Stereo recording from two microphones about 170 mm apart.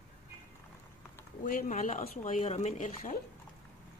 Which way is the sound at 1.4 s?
50° left (ahead or behind).